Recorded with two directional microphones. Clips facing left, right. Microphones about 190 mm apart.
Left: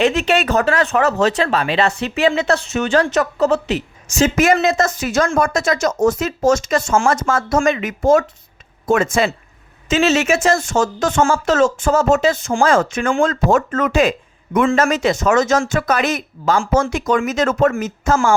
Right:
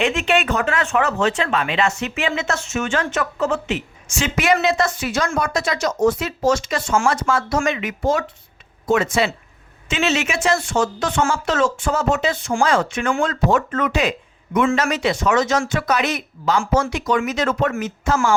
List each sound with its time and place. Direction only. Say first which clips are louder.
0.0 s speech: left 3 dB; 40° left (ahead or behind)